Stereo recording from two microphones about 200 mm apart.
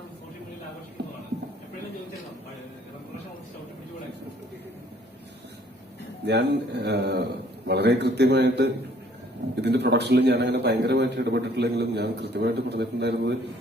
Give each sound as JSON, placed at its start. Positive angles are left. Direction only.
{"t": 6.2, "sound": "a man's voice", "side_deg": -60}